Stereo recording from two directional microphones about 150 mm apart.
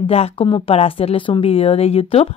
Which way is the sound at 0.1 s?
40° left (ahead or behind).